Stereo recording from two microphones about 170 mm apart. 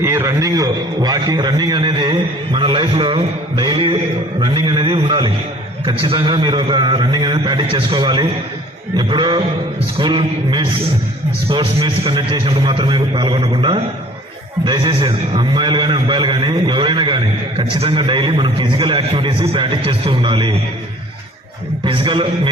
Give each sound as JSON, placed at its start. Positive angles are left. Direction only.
{"t": 0.0, "sound": "a man's voice", "side_deg": -15}
{"t": 21.8, "sound": "a man's voice", "side_deg": -30}